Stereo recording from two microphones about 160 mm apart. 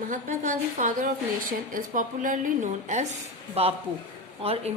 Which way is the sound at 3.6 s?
40° right (ahead or behind).